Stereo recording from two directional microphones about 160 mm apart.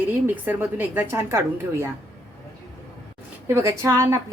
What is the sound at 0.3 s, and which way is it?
Speech, 10° right (ahead or behind).